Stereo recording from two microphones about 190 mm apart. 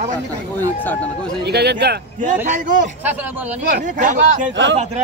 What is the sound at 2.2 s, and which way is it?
Speech, 40° right (ahead or behind).